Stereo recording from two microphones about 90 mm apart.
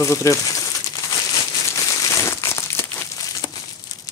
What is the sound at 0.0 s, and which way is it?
Crumpling, 35° left (ahead or behind).